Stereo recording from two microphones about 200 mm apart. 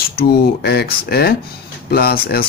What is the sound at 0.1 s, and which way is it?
Speech, 50° left (ahead or behind).